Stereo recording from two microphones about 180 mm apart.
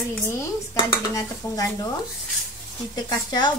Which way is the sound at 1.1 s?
20° left (ahead or behind).